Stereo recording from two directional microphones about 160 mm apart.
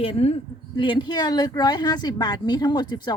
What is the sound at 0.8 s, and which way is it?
A woman's voice, 30° left (ahead or behind).